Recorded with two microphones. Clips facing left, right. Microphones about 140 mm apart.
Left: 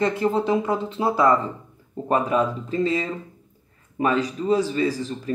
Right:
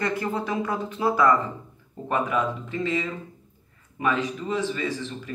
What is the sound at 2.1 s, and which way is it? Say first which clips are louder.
Speech: left 4 dB; 35° left (ahead or behind).